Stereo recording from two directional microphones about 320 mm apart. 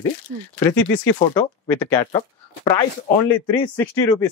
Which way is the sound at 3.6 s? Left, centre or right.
Centre.